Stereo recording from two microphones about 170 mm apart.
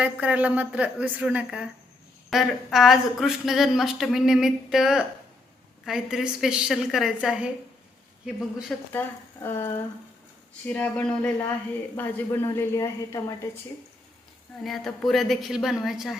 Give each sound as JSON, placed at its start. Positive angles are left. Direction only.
{"t": 0.0, "sound": "a woman's voice", "side_deg": -10}
{"t": 8.9, "sound": "speech", "side_deg": 10}
{"t": 10.8, "sound": "a woman's voice", "side_deg": 5}
{"t": 14.6, "sound": "speech", "side_deg": 0}